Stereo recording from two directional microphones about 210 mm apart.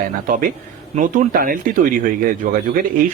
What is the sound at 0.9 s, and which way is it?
Speech, 40° right (ahead or behind).